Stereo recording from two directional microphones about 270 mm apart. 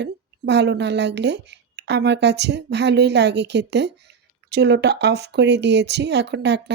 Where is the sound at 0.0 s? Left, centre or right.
Right.